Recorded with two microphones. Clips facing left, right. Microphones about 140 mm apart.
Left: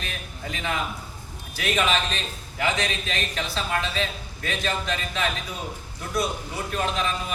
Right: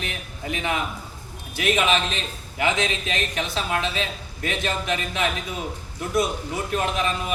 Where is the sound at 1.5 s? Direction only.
20° right (ahead or behind).